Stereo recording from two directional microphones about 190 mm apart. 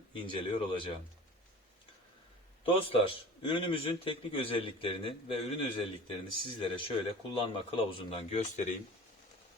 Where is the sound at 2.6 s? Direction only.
30° left (ahead or behind).